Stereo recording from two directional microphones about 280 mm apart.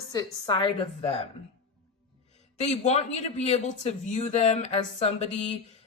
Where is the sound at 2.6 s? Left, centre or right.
Left.